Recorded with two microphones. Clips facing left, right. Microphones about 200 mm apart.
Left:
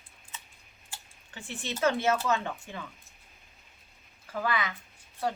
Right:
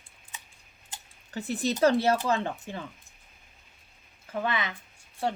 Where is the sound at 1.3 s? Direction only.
40° right (ahead or behind).